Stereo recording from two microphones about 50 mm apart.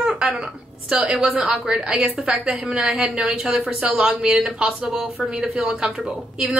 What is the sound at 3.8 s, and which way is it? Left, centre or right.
Speech, right.